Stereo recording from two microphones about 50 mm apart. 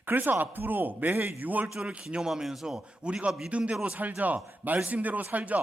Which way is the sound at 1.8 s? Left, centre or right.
Centre.